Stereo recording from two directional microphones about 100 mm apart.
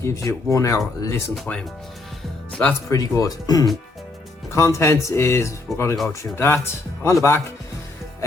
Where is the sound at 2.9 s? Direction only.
35° left (ahead or behind).